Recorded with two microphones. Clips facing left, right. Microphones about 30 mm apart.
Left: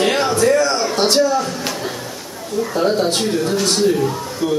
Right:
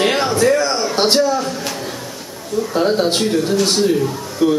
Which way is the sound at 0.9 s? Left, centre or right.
Right.